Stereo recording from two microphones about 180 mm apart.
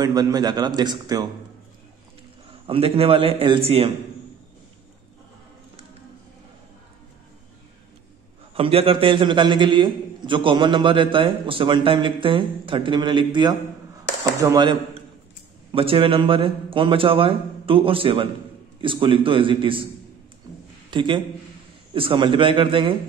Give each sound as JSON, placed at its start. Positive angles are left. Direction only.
{"t": 0.0, "sound": "a man's voice", "side_deg": -20}
{"t": 2.6, "sound": "a man's voice", "side_deg": -30}
{"t": 8.5, "sound": "a man's voice", "side_deg": -30}
{"t": 20.9, "sound": "a man's voice", "side_deg": -25}